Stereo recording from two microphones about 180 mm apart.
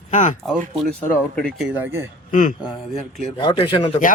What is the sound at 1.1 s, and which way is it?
Speech, 5° left (ahead or behind).